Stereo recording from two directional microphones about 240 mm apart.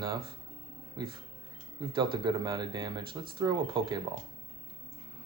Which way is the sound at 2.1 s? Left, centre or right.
Centre.